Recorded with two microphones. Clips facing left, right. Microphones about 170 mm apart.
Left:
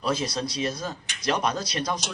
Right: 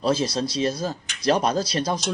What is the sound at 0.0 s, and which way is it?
A man's voice, 30° right (ahead or behind).